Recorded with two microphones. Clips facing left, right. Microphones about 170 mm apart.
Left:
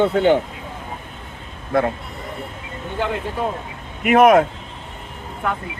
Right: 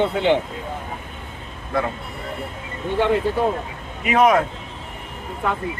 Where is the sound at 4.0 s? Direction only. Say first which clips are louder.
Left 4 dB; 55° left (ahead or behind).